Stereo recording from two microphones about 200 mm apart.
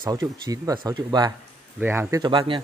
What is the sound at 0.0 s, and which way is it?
A man's voice, 20° right (ahead or behind).